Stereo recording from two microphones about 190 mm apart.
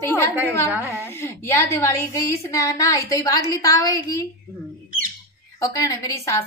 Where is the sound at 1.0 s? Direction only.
10° left (ahead or behind).